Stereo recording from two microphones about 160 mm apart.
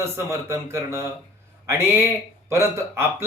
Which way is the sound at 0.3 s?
15° right (ahead or behind).